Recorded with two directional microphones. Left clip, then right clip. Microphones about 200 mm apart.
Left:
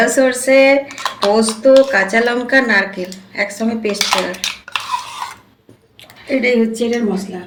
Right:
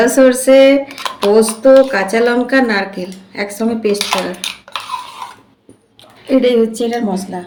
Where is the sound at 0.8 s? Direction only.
20° right (ahead or behind).